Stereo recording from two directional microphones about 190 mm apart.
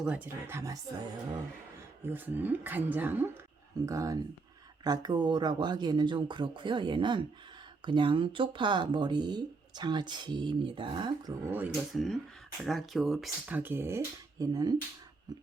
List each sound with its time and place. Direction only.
0.0 s speech: 10° right (ahead or behind)
2.0 s speech: 10° right (ahead or behind)
11.4 s speech: 10° right (ahead or behind)